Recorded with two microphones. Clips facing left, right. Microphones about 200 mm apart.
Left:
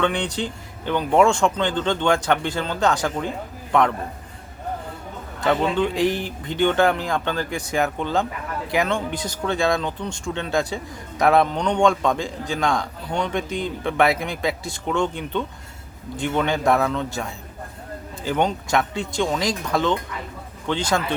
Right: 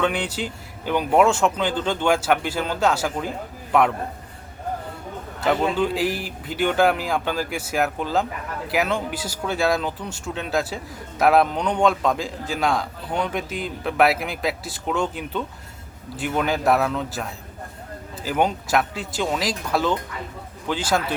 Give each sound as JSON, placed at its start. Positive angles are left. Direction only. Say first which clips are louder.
{"t": 0.0, "sound": "speech", "louder": "left 1 dB", "side_deg": -5}
{"t": 5.4, "sound": "a man's voice", "louder": "left 1 dB", "side_deg": -5}
{"t": 18.3, "sound": "a man's voice", "louder": "even", "side_deg": -5}